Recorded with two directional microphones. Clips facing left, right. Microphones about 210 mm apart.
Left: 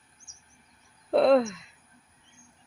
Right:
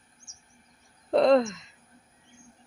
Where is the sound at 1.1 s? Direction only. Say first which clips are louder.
Even; 5° left (ahead or behind).